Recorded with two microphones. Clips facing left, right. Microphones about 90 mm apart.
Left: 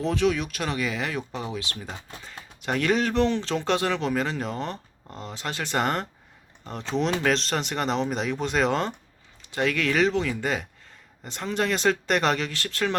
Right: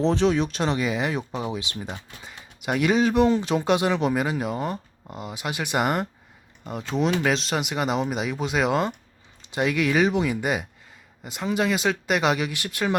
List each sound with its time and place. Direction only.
0.0 s speech: 30° right (ahead or behind); by 6.1 s 10° right (ahead or behind)
7.2 s speech: 5° right (ahead or behind)
9.4 s speech: 20° right (ahead or behind)